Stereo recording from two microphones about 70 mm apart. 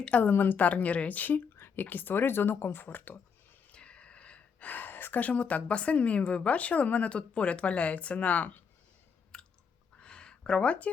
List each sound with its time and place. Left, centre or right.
0.0 s a woman's voice: left
3.7 s speech: centre
9.3 s chewing: centre
10.0 s a sound: centre